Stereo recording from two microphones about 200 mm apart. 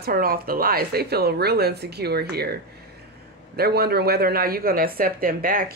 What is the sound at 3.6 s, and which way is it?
Speech, 50° right (ahead or behind).